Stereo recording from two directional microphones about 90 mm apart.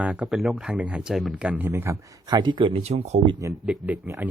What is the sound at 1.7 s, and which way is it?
Speech, 30° right (ahead or behind).